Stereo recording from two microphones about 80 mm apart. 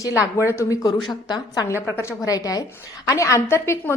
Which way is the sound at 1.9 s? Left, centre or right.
Left.